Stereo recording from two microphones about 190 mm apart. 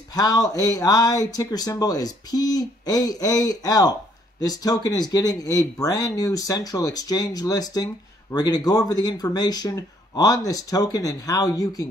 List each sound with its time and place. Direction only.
0.1 s speech: 20° left (ahead or behind)